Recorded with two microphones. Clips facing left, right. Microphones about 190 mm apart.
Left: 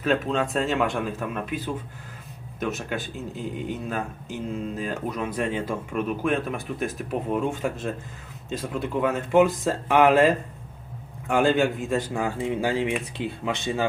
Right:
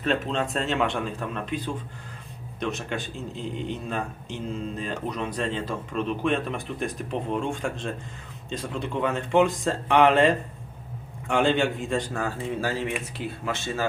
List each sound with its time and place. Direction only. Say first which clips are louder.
0.0 s speech: left 2 dB; centre (ahead or behind)
12.1 s speech: left 3 dB; 15° left (ahead or behind)